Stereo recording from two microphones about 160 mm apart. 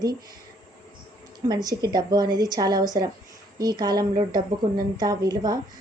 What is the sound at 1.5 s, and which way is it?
Speech, 25° right (ahead or behind).